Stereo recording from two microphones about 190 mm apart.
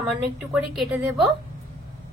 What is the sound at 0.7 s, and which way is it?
Speech, centre (ahead or behind).